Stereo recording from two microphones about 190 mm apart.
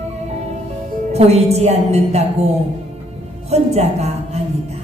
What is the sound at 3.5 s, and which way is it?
Speech, 35° right (ahead or behind).